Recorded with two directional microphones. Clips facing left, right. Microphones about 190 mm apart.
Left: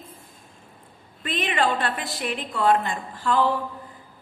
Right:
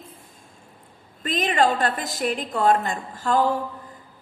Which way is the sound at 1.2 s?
40° right (ahead or behind).